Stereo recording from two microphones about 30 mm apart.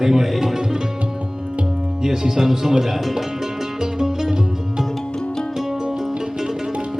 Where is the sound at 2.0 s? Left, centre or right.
Centre.